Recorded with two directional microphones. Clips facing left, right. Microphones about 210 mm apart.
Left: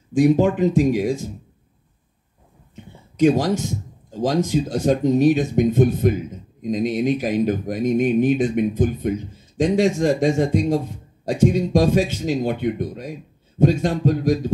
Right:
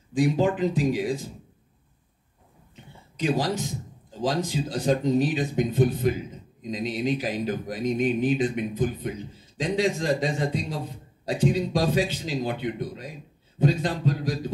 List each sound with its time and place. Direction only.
0.1 s speech: 50° left (ahead or behind)
2.7 s a sound: 45° left (ahead or behind)
4.2 s speech: 45° left (ahead or behind)